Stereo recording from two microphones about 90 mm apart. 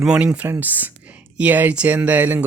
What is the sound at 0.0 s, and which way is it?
Speech, 10° right (ahead or behind).